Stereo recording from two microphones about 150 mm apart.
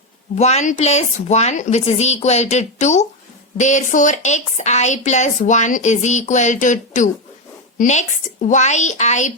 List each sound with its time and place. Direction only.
0.3 s a woman's voice: 45° left (ahead or behind)